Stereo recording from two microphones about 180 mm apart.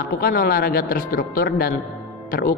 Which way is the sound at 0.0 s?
55° left (ahead or behind).